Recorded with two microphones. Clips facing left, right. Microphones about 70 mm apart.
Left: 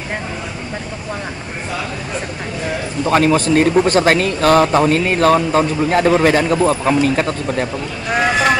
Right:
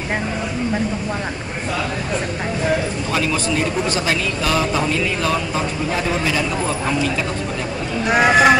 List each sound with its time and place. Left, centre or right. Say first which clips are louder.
3.1 s a man's voice: left 10 dB; left
8.1 s speech: right 2 dB; centre